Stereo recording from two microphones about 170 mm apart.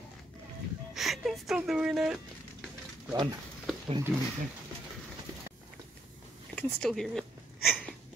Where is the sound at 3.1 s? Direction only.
20° right (ahead or behind).